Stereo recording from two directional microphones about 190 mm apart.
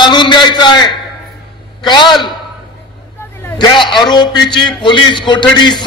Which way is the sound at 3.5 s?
25° left (ahead or behind).